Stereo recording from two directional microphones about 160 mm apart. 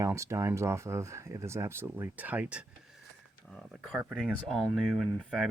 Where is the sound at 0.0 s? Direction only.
20° right (ahead or behind).